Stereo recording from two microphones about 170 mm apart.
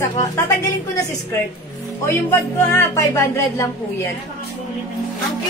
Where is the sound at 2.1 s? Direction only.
15° left (ahead or behind).